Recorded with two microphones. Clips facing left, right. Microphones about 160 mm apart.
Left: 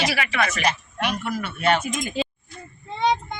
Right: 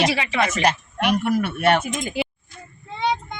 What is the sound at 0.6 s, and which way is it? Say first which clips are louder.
Speech: right 4 dB; 60° right (ahead or behind).